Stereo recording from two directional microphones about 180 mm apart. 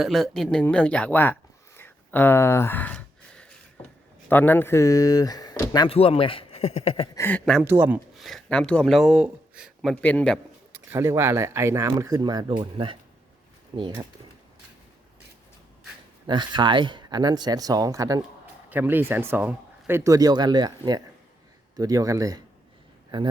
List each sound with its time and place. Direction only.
0.0 s speech: centre (ahead or behind)
3.8 s a sound: 10° left (ahead or behind)
4.3 s speech: 10° left (ahead or behind); by 7.1 s 35° left (ahead or behind)
7.2 s a man's voice: 10° left (ahead or behind)
7.6 s speech: 10° right (ahead or behind)
8.1 s speech: centre (ahead or behind)
9.9 s a man's voice: 5° left (ahead or behind)
10.7 s speech: 10° right (ahead or behind)
16.2 s speech: 25° right (ahead or behind)